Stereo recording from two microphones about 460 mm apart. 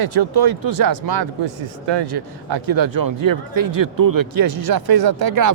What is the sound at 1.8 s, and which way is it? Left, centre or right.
Speech, right.